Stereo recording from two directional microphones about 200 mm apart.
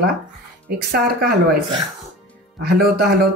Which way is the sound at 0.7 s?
50° right (ahead or behind).